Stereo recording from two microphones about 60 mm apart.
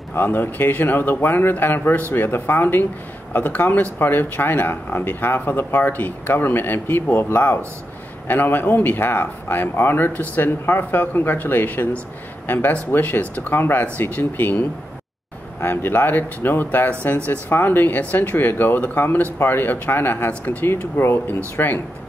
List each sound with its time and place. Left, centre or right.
0.1 s speech: left